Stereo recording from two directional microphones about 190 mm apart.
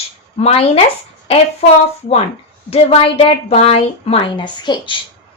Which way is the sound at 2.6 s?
30° left (ahead or behind).